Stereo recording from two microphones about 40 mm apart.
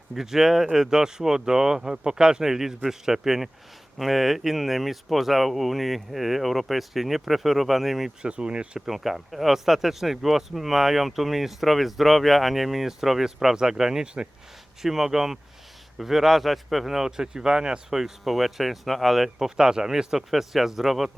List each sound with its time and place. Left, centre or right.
0.1 s speech: centre
8.2 s speech: right
8.9 s speech: centre
14.8 s speech: centre
19.5 s speech: centre